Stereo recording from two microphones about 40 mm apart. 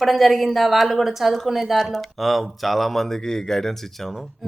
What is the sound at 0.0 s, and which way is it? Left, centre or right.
A woman's voice, centre.